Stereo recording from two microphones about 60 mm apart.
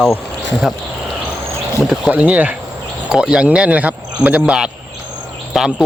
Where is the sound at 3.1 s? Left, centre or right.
Centre.